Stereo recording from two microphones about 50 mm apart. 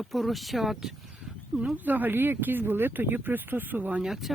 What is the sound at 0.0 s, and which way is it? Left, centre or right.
Speech, centre.